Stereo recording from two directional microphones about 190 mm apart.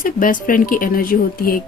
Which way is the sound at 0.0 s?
45° left (ahead or behind).